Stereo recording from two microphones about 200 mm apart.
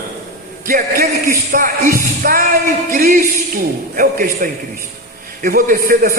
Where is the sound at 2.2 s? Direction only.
45° right (ahead or behind).